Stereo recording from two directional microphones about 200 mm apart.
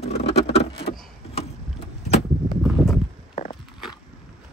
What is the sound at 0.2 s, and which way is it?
Vehicle, 30° left (ahead or behind).